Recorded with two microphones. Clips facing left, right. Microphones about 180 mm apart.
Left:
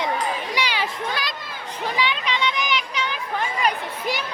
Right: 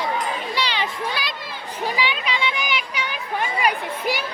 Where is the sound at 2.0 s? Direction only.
5° right (ahead or behind).